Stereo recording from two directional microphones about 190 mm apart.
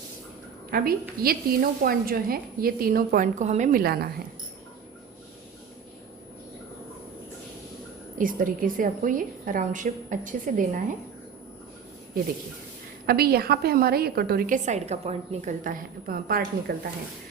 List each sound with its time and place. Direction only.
0.7 s a woman's voice: 50° right (ahead or behind)
8.2 s a woman's voice: 45° right (ahead or behind)
13.1 s a woman's voice: 55° right (ahead or behind)